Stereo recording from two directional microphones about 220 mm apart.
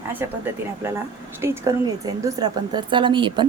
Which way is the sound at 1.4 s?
15° right (ahead or behind).